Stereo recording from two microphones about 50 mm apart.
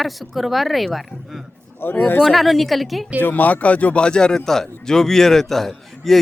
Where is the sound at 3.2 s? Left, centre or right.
Left; by 6.2 s centre.